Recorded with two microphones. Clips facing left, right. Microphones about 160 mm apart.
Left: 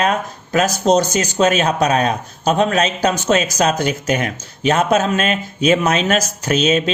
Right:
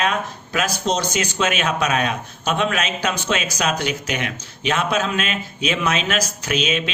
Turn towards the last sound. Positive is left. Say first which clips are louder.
# left 6 dB
turn(degrees=40)  # may be behind; listen again after turning